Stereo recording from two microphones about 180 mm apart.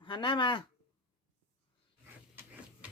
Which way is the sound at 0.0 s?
25° left (ahead or behind).